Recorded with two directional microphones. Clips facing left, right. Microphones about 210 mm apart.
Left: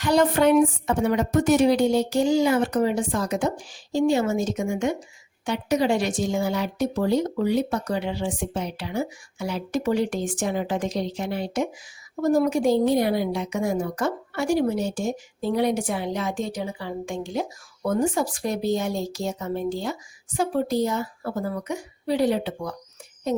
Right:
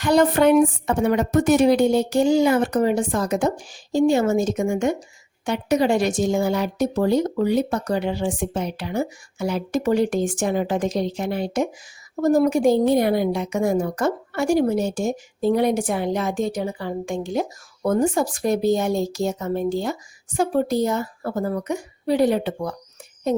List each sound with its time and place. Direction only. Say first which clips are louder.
0.0 s a woman's voice: right 3 dB; 55° right (ahead or behind)